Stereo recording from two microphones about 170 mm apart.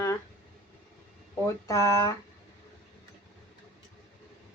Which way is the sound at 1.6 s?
15° left (ahead or behind).